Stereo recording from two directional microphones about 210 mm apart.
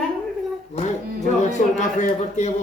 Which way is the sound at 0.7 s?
35° left (ahead or behind).